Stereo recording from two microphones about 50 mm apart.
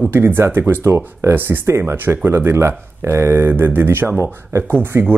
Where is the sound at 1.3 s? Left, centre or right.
Right.